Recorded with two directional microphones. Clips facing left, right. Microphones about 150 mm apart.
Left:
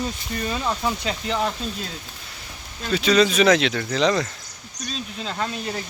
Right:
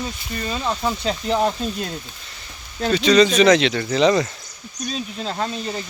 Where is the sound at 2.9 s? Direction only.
5° left (ahead or behind).